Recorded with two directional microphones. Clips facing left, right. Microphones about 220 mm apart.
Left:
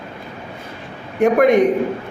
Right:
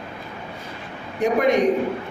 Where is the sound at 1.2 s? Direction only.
55° left (ahead or behind).